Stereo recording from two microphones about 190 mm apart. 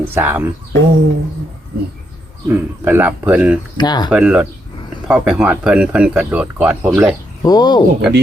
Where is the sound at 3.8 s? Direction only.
20° left (ahead or behind).